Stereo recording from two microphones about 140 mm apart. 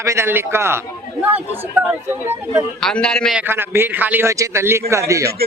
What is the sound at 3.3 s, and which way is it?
A man's voice, 15° right (ahead or behind).